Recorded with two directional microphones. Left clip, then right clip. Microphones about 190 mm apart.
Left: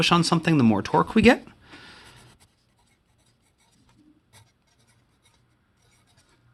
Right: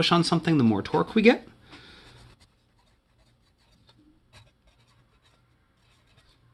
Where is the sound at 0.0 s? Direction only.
25° left (ahead or behind).